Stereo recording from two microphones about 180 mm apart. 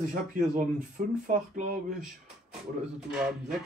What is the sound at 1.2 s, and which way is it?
Speech, 45° right (ahead or behind).